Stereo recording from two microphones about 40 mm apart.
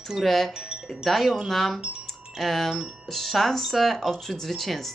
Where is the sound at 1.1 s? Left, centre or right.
Centre.